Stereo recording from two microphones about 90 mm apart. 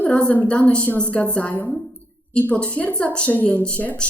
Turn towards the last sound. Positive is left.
turn(degrees=15)  # may be behind; listen again after turning